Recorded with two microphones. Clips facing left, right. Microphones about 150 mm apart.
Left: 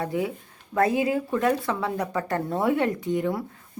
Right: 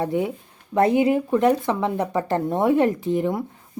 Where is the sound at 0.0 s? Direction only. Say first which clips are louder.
Right 4 dB; 25° right (ahead or behind).